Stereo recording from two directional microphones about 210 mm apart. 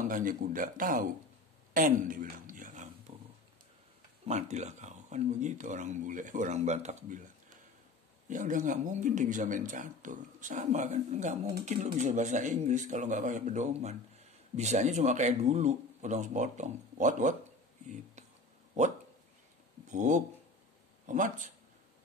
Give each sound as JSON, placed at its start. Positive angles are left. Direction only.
{"t": 0.1, "sound": "speech", "side_deg": -40}
{"t": 3.1, "sound": "pig", "side_deg": -30}
{"t": 4.3, "sound": "speech", "side_deg": -35}
{"t": 19.9, "sound": "speech", "side_deg": -35}